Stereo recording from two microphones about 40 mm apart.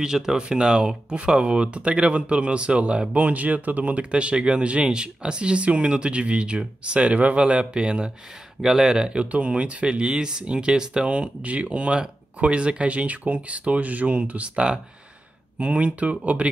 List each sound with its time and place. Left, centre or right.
0.0 s speech: centre
3.3 s speech: right
8.5 s speech: centre
11.1 s speech: right